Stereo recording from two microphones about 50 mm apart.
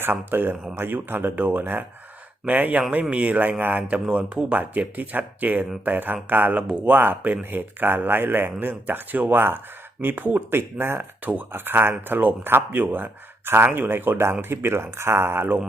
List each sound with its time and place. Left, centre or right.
0.0 s speech: right
4.5 s speech: right